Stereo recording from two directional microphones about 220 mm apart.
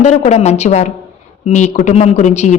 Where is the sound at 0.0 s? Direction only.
30° left (ahead or behind).